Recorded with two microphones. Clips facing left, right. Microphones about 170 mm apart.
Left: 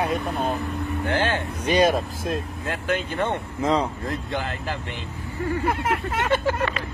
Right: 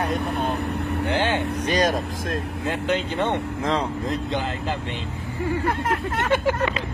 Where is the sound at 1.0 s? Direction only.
15° right (ahead or behind).